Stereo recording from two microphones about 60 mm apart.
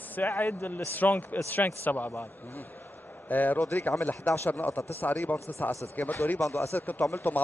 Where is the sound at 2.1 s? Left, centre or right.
Left.